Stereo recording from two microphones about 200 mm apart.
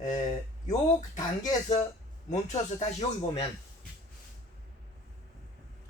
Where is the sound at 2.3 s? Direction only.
35° left (ahead or behind).